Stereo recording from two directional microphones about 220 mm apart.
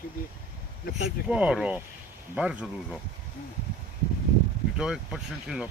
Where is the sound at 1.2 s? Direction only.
5° right (ahead or behind).